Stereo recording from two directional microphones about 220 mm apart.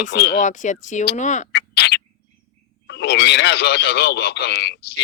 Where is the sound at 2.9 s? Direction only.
50° left (ahead or behind).